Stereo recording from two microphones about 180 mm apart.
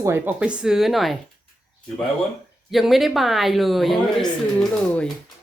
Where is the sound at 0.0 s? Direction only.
15° right (ahead or behind).